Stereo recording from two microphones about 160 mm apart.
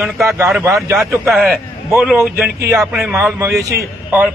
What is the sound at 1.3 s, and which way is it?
Speech, centre (ahead or behind).